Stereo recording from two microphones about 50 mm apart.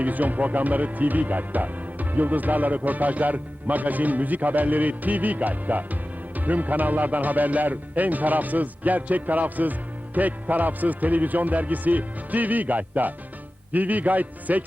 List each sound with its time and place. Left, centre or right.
0.0 s speech: right